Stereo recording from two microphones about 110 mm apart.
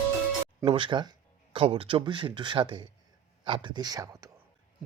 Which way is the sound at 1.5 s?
55° right (ahead or behind).